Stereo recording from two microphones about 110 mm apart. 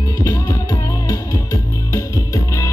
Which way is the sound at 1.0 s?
30° left (ahead or behind).